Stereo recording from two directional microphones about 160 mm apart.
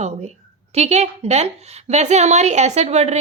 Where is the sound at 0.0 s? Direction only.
40° right (ahead or behind).